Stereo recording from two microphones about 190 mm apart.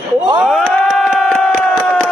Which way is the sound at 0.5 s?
Centre (ahead or behind).